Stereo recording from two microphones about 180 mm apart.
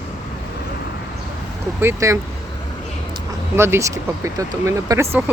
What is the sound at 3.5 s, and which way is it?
Speech, 15° right (ahead or behind).